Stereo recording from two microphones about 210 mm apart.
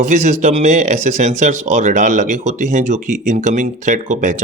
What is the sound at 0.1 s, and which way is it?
Speech, 35° right (ahead or behind).